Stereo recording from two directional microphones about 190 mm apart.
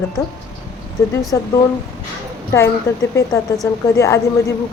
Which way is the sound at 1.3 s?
15° left (ahead or behind).